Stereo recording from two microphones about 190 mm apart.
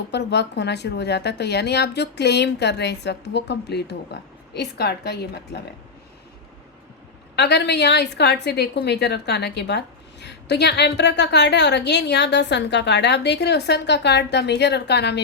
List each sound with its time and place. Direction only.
0.1 s a woman's voice: 65° left (ahead or behind)
7.3 s a woman's voice: 65° left (ahead or behind)